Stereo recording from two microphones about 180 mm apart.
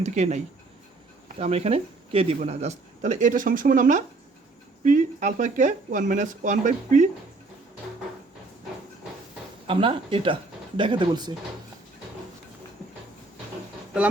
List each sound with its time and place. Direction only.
0.0 s speech: 40° right (ahead or behind)
9.6 s speech: 30° right (ahead or behind)